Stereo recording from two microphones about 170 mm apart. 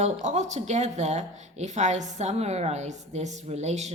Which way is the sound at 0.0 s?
40° right (ahead or behind).